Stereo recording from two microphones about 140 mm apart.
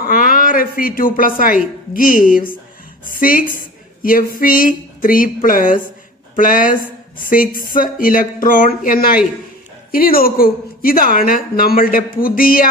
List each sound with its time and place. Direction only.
0.0 s a woman's voice: 85° left
3.1 s a woman's voice: 90° left